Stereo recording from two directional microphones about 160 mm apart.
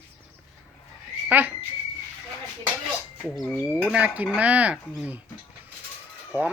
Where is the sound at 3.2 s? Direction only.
Centre (ahead or behind).